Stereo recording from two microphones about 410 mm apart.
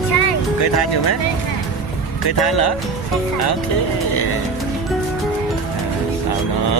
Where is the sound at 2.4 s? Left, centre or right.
Left.